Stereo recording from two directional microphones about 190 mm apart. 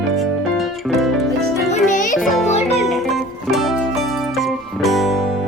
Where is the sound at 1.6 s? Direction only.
40° left (ahead or behind).